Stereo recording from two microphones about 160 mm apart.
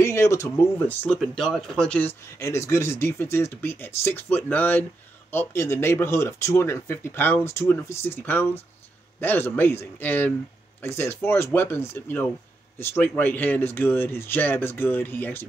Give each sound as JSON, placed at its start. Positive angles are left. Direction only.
{"t": 0.0, "sound": "speech", "side_deg": 15}
{"t": 1.1, "sound": "speech", "side_deg": 0}